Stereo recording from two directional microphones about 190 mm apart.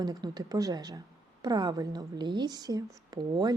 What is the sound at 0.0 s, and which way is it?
A woman's voice, 20° right (ahead or behind).